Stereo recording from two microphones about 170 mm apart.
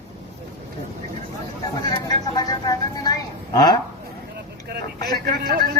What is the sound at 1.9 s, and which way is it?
A woman's voice, 20° left (ahead or behind).